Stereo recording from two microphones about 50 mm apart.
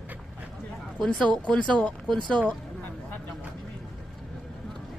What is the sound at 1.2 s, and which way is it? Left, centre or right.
Speech, left.